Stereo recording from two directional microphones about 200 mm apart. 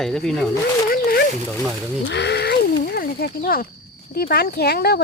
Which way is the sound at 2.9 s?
50° left (ahead or behind).